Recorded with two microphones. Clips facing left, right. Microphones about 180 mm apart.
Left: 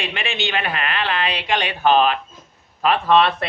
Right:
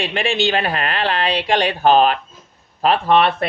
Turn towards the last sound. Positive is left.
turn(degrees=-35)  # may be behind; listen again after turning